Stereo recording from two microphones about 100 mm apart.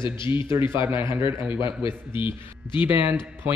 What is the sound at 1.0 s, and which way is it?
Speech, 25° right (ahead or behind).